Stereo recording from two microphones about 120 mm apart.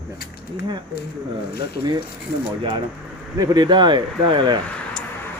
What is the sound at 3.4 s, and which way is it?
Speech, 35° right (ahead or behind).